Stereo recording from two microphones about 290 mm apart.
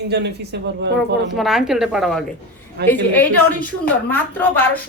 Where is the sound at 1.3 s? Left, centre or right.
Centre.